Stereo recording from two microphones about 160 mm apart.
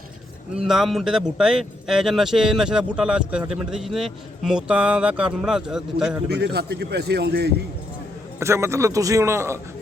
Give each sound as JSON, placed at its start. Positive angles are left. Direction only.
{"t": 0.5, "sound": "speech", "side_deg": 0}
{"t": 6.2, "sound": "a man's voice", "side_deg": -90}
{"t": 8.4, "sound": "a man's voice", "side_deg": -15}